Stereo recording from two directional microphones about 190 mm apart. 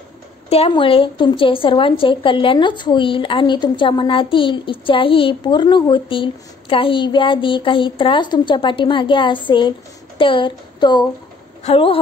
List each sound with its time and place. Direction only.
0.5 s a woman's voice: 30° left (ahead or behind)